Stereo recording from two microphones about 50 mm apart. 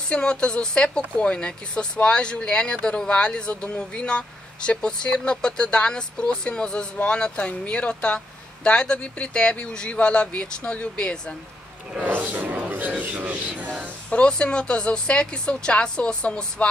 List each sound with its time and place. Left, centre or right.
0.1 s speech: centre
12.0 s speech: right
14.1 s speech: centre